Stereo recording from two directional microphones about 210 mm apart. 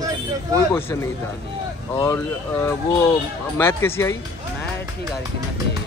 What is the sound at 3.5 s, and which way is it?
Speech, 10° left (ahead or behind).